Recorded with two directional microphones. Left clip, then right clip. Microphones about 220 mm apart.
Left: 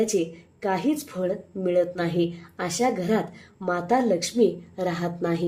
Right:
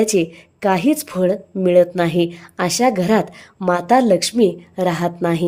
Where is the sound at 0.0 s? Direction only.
40° right (ahead or behind).